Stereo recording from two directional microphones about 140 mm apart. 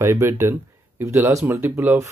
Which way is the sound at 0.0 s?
20° right (ahead or behind).